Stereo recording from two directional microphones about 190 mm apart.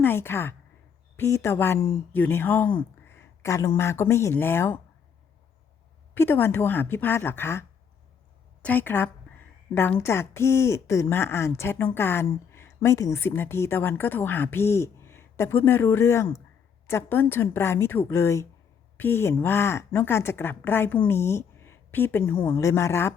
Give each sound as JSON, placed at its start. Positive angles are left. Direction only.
{"t": 0.0, "sound": "speech", "side_deg": 10}
{"t": 3.1, "sound": "a sound", "side_deg": 15}
{"t": 3.8, "sound": "speech", "side_deg": 15}
{"t": 6.1, "sound": "speech", "side_deg": 10}
{"t": 8.6, "sound": "speech", "side_deg": 10}
{"t": 21.1, "sound": "a sound", "side_deg": 15}
{"t": 22.4, "sound": "speech", "side_deg": 15}